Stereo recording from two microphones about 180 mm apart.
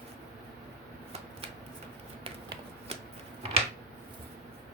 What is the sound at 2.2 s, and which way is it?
Shuffling cards, 30° right (ahead or behind).